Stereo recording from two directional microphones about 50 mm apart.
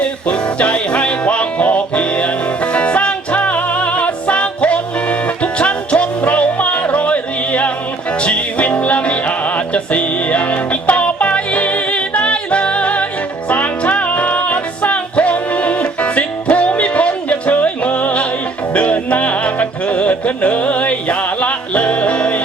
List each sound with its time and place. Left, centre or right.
0.3 s music: left